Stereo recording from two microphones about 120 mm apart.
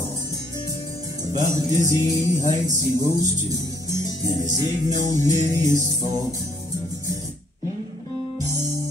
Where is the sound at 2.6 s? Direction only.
30° right (ahead or behind).